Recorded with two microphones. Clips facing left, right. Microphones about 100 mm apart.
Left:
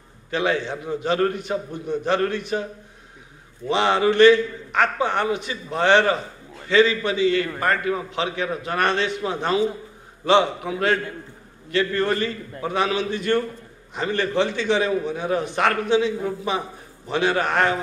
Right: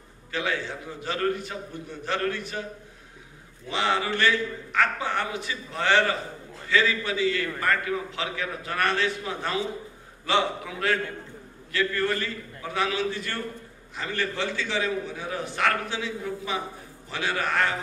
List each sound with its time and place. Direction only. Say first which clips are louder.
0.3 s a man's voice: left 6 dB; 20° left (ahead or behind)
3.7 s a man's voice: left 8 dB; 20° left (ahead or behind)
17.1 s a man's voice: left 7 dB; 20° left (ahead or behind)